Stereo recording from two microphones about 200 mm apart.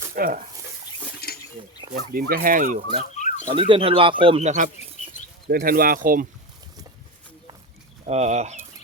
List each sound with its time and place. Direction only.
0.2 s speech: 45° right (ahead or behind)
1.2 s a sound: 50° left (ahead or behind)
2.0 s speech: 50° right (ahead or behind)
3.2 s a sound: 35° left (ahead or behind)
3.4 s speech: 25° right (ahead or behind)
5.5 s speech: 45° right (ahead or behind)
8.0 s speech: 30° right (ahead or behind)